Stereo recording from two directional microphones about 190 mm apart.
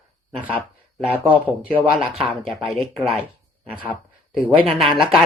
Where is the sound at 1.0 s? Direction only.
10° right (ahead or behind).